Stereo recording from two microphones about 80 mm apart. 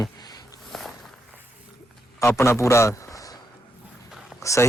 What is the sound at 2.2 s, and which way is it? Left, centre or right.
A man's voice, left.